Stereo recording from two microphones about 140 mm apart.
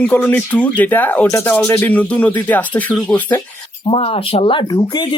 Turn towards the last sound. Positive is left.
turn(degrees=30)  # may be behind; listen again after turning